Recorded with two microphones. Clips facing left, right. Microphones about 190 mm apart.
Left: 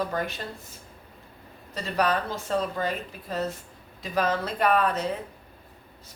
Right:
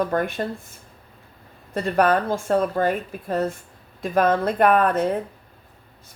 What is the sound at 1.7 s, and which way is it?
Speech, 55° right (ahead or behind).